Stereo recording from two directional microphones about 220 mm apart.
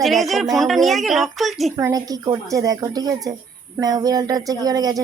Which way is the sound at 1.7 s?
15° right (ahead or behind).